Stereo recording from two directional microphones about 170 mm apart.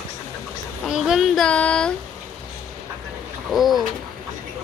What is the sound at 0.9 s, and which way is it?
Speech, 5° right (ahead or behind).